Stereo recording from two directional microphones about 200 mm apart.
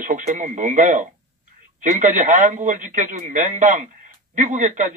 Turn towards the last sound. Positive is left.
turn(degrees=-40)  # may be behind; listen again after turning